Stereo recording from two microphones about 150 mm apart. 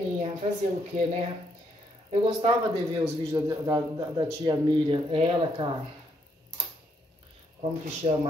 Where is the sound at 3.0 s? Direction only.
20° right (ahead or behind); by 5.7 s 35° right (ahead or behind).